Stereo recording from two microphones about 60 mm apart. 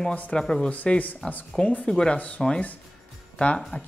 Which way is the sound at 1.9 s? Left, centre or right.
Centre.